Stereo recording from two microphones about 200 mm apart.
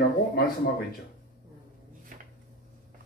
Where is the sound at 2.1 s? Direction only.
40° right (ahead or behind).